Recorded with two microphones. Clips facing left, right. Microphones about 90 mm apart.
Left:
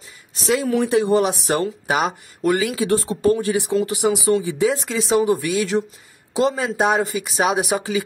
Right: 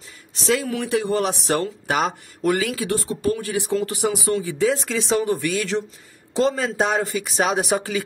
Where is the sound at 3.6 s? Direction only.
15° left (ahead or behind).